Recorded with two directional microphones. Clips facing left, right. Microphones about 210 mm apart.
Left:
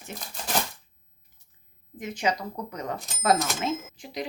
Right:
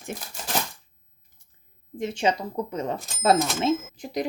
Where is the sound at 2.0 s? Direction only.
30° right (ahead or behind).